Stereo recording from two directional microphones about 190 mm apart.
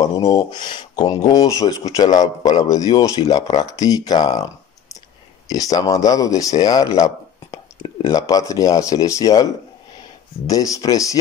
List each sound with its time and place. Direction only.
0.0 s speech: 20° left (ahead or behind)
5.5 s speech: 20° left (ahead or behind)